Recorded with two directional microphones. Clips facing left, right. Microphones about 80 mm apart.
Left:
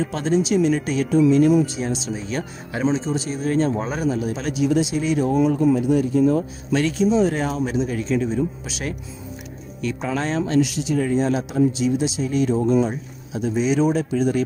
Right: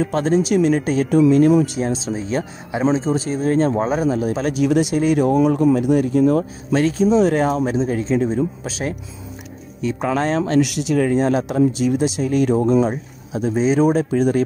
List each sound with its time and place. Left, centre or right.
0.0 s a man's voice: right
6.7 s speech: right
9.9 s a man's voice: right
13.3 s speech: right